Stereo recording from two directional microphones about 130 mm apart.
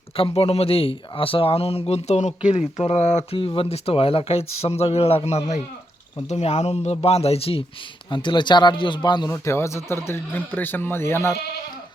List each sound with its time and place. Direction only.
0.2 s speech: 50° left (ahead or behind)
3.3 s speech: 45° left (ahead or behind)
8.1 s speech: 35° left (ahead or behind)
9.3 s speech: 20° left (ahead or behind)